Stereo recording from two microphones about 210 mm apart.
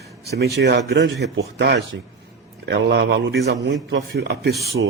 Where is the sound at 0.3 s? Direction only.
50° right (ahead or behind).